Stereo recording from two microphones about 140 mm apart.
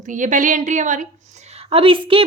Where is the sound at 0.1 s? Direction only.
65° right (ahead or behind).